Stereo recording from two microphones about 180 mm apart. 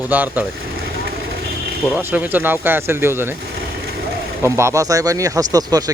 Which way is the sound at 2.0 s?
10° right (ahead or behind).